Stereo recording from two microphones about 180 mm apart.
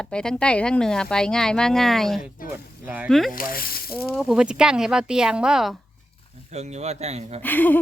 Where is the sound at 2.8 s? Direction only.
10° right (ahead or behind).